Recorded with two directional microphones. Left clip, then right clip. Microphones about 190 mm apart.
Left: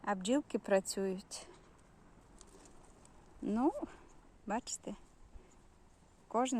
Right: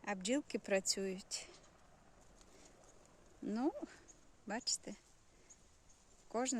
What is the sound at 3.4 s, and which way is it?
Speech, 5° right (ahead or behind).